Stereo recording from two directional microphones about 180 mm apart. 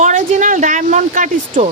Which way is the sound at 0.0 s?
45° right (ahead or behind).